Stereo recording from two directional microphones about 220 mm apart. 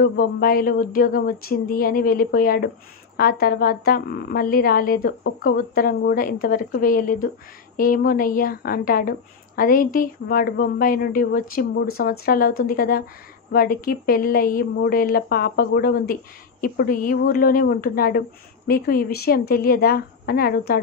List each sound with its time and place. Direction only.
0.0 s a woman's voice: 40° left (ahead or behind)